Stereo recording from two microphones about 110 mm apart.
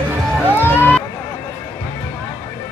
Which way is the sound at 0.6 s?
20° left (ahead or behind).